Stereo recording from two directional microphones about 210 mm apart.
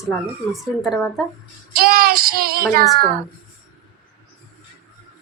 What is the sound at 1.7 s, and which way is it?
Child singing, 45° right (ahead or behind).